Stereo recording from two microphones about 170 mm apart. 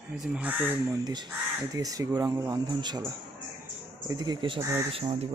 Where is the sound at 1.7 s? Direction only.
20° right (ahead or behind).